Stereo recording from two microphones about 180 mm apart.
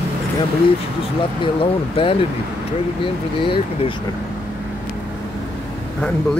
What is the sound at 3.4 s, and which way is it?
Speech, 30° left (ahead or behind).